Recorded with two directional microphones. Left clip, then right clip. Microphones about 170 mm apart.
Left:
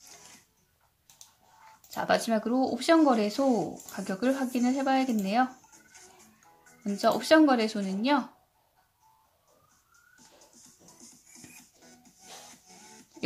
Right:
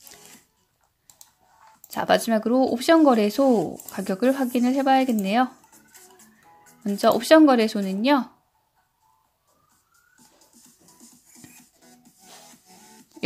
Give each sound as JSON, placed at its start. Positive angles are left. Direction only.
{"t": 1.9, "sound": "speech", "side_deg": -35}
{"t": 6.8, "sound": "speech", "side_deg": -35}
{"t": 11.8, "sound": "music", "side_deg": -35}